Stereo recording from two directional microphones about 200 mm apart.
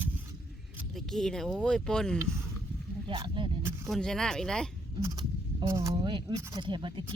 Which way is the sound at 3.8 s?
Centre (ahead or behind).